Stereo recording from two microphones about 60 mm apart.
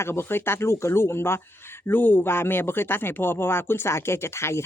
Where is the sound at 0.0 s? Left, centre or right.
Left.